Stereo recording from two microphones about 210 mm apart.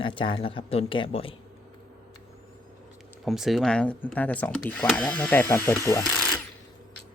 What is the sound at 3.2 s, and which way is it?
Speech, centre (ahead or behind).